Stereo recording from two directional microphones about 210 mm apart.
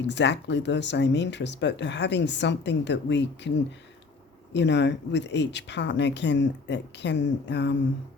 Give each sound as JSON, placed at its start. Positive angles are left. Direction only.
{"t": 0.1, "sound": "speech", "side_deg": 55}
{"t": 4.5, "sound": "speech", "side_deg": 55}